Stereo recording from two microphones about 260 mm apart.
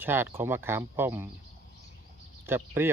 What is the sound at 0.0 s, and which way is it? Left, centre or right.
Speech, centre.